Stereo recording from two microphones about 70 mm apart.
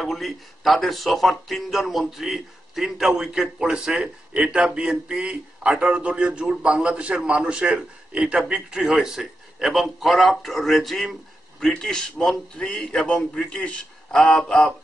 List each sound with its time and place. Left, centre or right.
0.0 s a man's voice: centre